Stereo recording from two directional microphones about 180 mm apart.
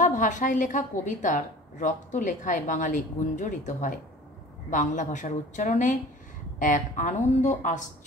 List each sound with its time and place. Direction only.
0.0 s a woman's voice: 45° left (ahead or behind)